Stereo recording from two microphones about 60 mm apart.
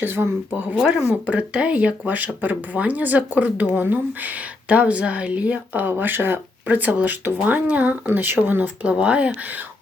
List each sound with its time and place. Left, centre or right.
0.0 s speech: right; by 9.3 s centre